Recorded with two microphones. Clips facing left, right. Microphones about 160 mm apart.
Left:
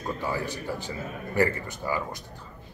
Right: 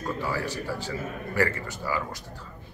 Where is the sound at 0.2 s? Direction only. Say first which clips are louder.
Right 1 dB; 20° left (ahead or behind).